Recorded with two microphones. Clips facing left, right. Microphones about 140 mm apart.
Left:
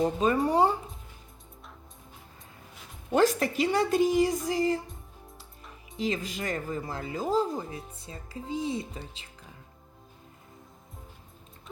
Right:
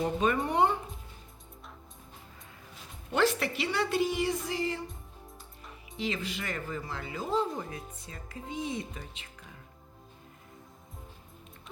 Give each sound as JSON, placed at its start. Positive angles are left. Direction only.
{"t": 0.4, "sound": "speech", "side_deg": 35}
{"t": 3.1, "sound": "speech", "side_deg": 40}
{"t": 6.0, "sound": "speech", "side_deg": 40}